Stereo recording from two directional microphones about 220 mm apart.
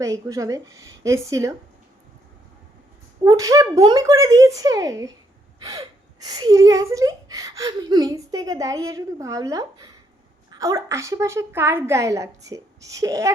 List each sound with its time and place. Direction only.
0.0 s speech: 15° right (ahead or behind)
3.2 s speech: 15° right (ahead or behind)